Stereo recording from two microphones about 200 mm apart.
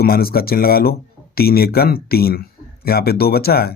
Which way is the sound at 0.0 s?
50° left (ahead or behind).